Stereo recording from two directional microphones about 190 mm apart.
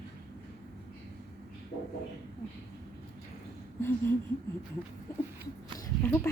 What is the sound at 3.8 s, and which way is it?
Speech, 10° left (ahead or behind).